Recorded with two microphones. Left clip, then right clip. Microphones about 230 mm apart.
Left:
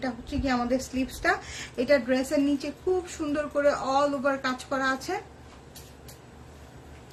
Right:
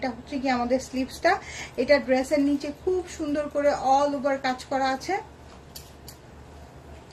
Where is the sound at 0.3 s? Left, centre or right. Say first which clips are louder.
Right 2 dB; centre.